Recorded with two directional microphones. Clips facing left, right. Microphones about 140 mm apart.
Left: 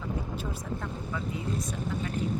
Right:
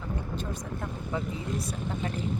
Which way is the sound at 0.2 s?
5° left (ahead or behind).